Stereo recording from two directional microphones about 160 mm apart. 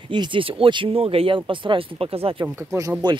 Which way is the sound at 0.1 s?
30° right (ahead or behind).